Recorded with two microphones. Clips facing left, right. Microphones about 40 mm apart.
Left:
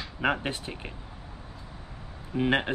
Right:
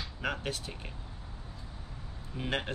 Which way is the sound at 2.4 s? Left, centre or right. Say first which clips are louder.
Left 9 dB; left.